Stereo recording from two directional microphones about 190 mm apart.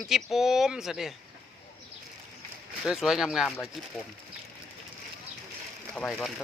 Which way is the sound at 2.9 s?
Centre (ahead or behind).